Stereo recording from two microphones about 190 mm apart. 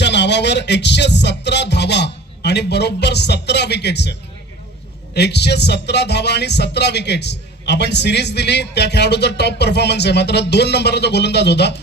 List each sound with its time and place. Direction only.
0.0 s speech: 65° left (ahead or behind)
5.1 s speech: 60° left (ahead or behind)